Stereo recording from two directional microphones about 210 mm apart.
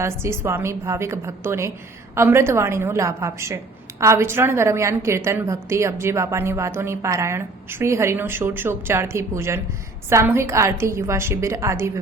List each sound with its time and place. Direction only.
0.0 s a woman's voice: 10° right (ahead or behind)